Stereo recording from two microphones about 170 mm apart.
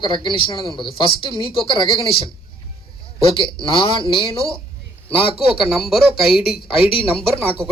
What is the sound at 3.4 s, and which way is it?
Speech, 30° left (ahead or behind).